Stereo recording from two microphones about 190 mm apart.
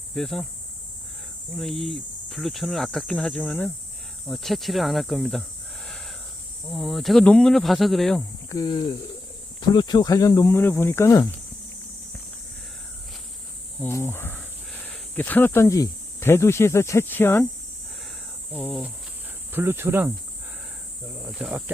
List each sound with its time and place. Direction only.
0.1 s speech: centre (ahead or behind)
1.5 s speech: centre (ahead or behind)
8.4 s speech: 20° left (ahead or behind)
13.8 s speech: 10° left (ahead or behind)
18.5 s speech: 10° left (ahead or behind)
19.5 s cricket: 10° right (ahead or behind)
21.2 s speech: 5° right (ahead or behind)